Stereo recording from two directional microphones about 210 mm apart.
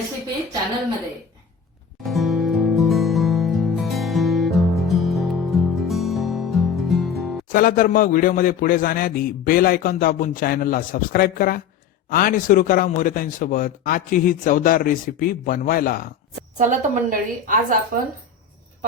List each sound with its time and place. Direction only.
2.0 s music: centre (ahead or behind)
7.5 s a man's voice: 40° left (ahead or behind)
16.6 s a woman's voice: 35° right (ahead or behind)